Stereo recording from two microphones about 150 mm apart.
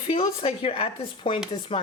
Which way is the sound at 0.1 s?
35° left (ahead or behind).